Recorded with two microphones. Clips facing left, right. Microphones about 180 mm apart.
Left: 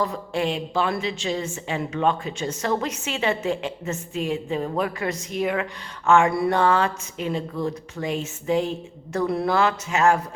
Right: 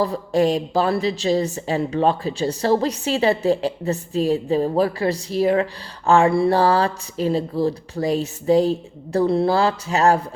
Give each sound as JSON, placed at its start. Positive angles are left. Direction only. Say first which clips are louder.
{"t": 0.0, "sound": "a woman's voice", "louder": "right 6 dB", "side_deg": -35}